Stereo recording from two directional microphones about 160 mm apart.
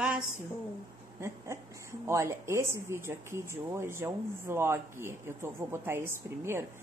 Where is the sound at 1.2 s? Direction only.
15° right (ahead or behind).